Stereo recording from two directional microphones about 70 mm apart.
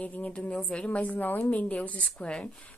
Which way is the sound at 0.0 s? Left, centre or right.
Centre.